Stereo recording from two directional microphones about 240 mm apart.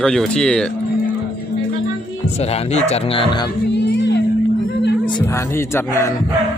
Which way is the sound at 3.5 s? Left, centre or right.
Left.